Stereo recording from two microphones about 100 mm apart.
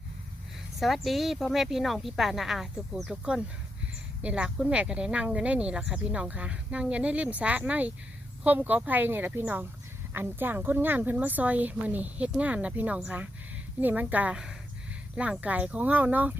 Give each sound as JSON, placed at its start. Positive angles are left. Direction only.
{"t": 0.8, "sound": "speech", "side_deg": 0}